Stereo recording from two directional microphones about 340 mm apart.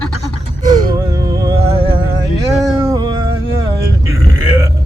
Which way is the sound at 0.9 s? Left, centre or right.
Centre.